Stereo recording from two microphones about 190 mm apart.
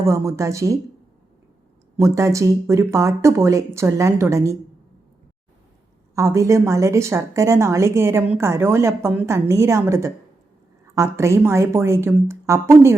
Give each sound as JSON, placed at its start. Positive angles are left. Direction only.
{"t": 0.0, "sound": "a woman's voice", "side_deg": -15}
{"t": 2.0, "sound": "a woman's voice", "side_deg": -15}
{"t": 6.1, "sound": "a woman's voice", "side_deg": -15}